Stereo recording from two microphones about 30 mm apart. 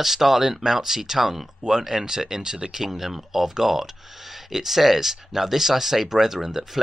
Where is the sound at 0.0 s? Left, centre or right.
Centre.